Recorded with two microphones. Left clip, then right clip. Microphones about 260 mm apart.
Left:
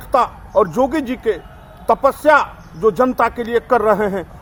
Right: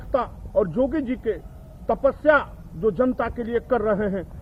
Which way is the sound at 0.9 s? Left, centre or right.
Centre.